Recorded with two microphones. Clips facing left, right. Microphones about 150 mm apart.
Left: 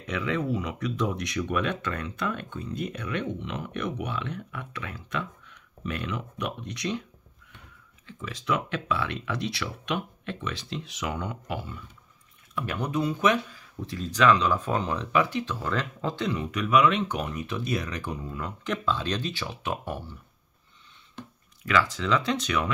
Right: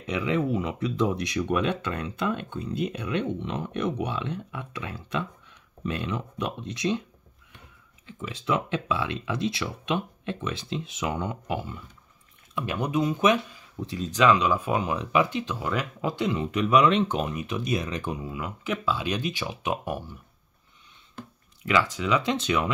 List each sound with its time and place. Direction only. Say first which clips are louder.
0.0 s speech: right 3 dB; 20° right (ahead or behind)
8.2 s speech: right 2 dB; 25° right (ahead or behind)
18.2 s speech: right 1 dB; 10° right (ahead or behind)
21.6 s speech: right 1 dB; 15° right (ahead or behind)